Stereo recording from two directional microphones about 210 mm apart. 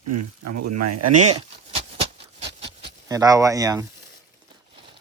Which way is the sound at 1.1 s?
35° right (ahead or behind).